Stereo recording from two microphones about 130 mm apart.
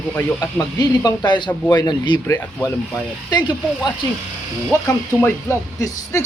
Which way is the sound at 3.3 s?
35° left (ahead or behind).